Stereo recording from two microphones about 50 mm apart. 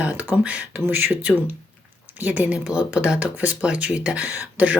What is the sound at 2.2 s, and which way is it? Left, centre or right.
Speech, right.